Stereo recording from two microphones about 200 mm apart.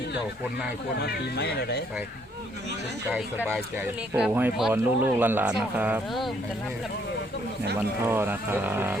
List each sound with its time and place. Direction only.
0.9 s speech: 55° left (ahead or behind)
3.1 s speech: 5° right (ahead or behind)
8.0 s speech: 10° right (ahead or behind)